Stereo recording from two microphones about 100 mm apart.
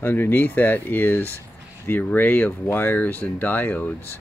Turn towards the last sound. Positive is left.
turn(degrees=15)  # may be behind; listen again after turning